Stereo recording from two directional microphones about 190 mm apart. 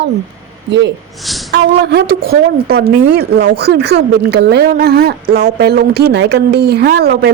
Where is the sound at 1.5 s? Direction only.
60° right (ahead or behind).